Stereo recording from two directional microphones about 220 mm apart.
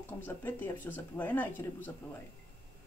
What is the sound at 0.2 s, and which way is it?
Speech, 10° left (ahead or behind).